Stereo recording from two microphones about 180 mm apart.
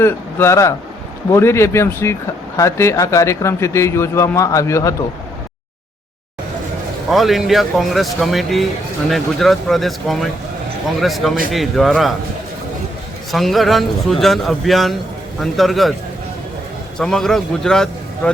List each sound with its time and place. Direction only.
0.0 s speech: 15° left (ahead or behind)
7.1 s a man's voice: centre (ahead or behind)
13.3 s a man's voice: centre (ahead or behind)
17.0 s a man's voice: 5° left (ahead or behind)